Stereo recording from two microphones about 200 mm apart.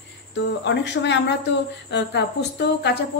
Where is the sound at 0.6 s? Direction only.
60° left (ahead or behind).